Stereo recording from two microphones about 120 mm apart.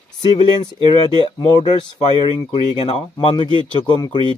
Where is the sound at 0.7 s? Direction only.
45° left (ahead or behind).